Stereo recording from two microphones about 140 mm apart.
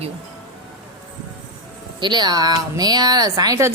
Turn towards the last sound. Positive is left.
turn(degrees=-25)  # may be behind; listen again after turning